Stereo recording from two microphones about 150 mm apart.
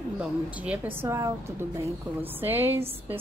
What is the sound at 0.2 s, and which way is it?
A woman's voice, 10° right (ahead or behind).